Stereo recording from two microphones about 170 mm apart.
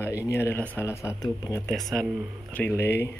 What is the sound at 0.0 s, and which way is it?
Speech, 15° left (ahead or behind).